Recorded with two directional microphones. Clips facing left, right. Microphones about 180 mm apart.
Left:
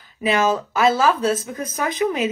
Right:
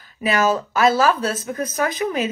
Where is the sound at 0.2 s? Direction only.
20° left (ahead or behind).